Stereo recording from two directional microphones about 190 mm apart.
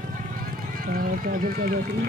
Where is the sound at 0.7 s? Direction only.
50° right (ahead or behind).